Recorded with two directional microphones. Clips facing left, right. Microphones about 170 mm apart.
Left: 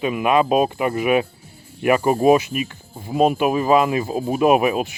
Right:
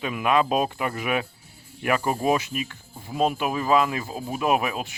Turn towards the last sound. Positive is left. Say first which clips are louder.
# left 8 dB
turn(degrees=15)  # may be behind; listen again after turning